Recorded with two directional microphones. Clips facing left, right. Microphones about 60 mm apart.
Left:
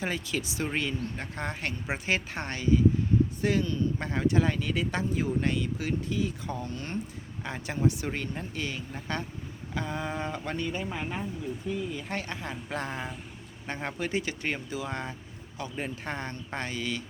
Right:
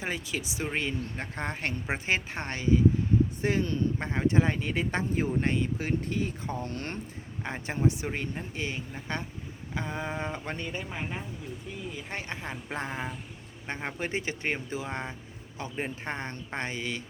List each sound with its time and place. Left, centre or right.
0.0 s speech: centre
6.1 s speech: right
7.4 s speech: right; by 12.1 s centre
12.1 s speech: right